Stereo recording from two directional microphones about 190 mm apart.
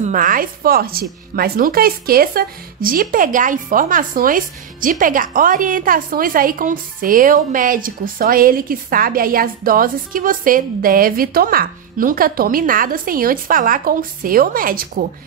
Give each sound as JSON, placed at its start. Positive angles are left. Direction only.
{"t": 0.0, "sound": "speech", "side_deg": -45}